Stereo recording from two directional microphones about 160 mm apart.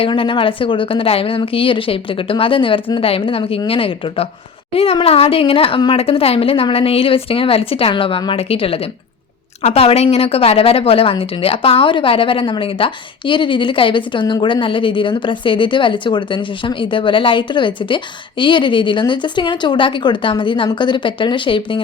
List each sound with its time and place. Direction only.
0.0 s a woman's voice: 35° left (ahead or behind)